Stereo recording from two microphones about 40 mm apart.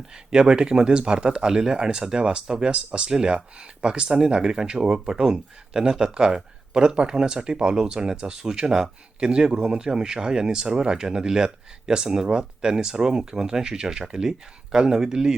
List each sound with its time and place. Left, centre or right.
0.1 s speech: centre